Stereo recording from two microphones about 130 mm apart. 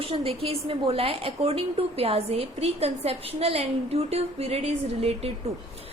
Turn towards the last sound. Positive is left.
turn(degrees=-50)  # may be behind; listen again after turning